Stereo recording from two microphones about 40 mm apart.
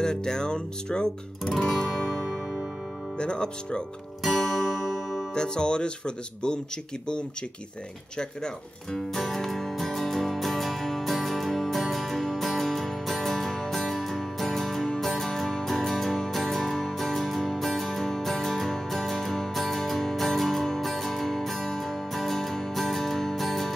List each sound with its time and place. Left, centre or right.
0.0 s speech: centre
1.7 s guitar: centre
3.2 s speech: left
4.2 s music: centre
5.3 s speech: left
8.9 s music: centre